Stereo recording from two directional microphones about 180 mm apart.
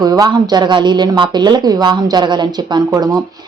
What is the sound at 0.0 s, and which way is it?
Speech, 20° right (ahead or behind).